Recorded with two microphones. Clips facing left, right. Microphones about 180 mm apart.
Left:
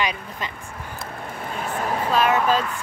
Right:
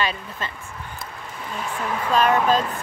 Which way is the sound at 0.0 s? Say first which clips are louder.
Even; 15° left (ahead or behind).